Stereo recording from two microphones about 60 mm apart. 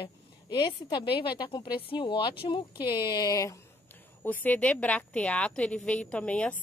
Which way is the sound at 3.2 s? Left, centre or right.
Left.